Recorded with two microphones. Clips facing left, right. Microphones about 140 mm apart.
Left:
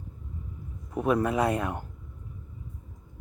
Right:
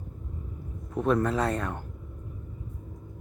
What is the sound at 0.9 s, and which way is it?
Speech, 10° left (ahead or behind).